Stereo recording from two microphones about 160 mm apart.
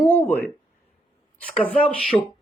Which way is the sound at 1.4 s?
10° left (ahead or behind).